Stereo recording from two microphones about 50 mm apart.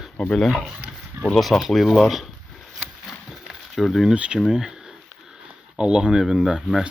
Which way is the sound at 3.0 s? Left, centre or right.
Centre.